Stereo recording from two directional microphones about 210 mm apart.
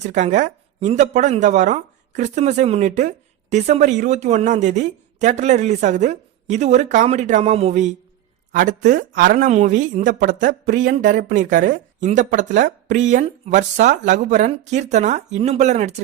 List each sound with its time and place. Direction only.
0.0 s speech: 35° right (ahead or behind)